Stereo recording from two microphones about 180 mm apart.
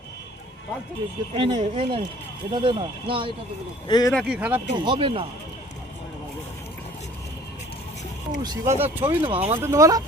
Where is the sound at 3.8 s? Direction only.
25° left (ahead or behind).